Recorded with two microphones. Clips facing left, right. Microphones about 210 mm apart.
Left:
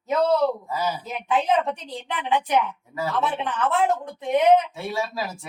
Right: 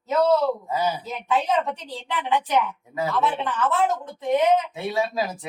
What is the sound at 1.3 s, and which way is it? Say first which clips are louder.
Speech: left 1 dB; 15° left (ahead or behind).